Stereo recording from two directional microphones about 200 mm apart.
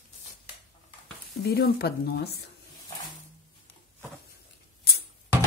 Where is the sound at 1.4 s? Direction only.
50° left (ahead or behind).